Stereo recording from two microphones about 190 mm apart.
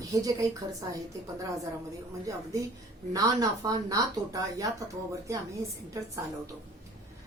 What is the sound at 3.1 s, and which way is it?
Speech, 20° right (ahead or behind).